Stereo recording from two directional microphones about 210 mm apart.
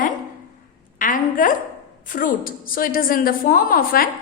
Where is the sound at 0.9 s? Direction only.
40° left (ahead or behind).